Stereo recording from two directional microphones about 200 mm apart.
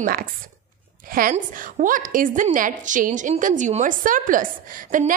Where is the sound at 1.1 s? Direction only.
45° right (ahead or behind).